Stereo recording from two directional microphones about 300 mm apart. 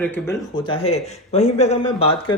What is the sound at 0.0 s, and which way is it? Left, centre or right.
A man's voice, centre.